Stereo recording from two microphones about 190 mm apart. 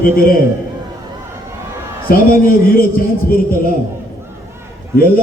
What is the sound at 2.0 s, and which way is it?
A man's voice, 50° left (ahead or behind).